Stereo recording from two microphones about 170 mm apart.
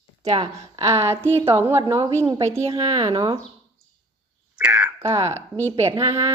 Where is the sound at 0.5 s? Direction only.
15° right (ahead or behind).